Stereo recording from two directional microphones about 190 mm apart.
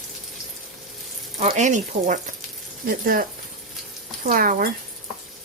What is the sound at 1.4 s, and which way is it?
Speech, 40° right (ahead or behind).